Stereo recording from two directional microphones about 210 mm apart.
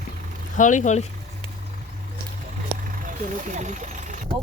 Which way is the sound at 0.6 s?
35° left (ahead or behind).